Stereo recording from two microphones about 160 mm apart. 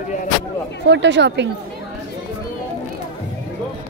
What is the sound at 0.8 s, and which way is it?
Speech, 90° right.